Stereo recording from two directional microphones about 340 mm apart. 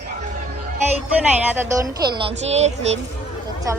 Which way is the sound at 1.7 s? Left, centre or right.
Centre.